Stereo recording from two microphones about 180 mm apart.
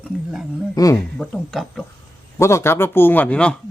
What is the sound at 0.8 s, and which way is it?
Speech, 20° left (ahead or behind).